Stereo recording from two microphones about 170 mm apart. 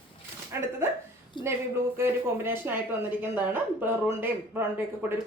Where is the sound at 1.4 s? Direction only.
30° left (ahead or behind).